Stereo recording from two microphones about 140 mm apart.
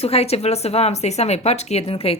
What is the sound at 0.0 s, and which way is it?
A woman's voice, 45° left (ahead or behind).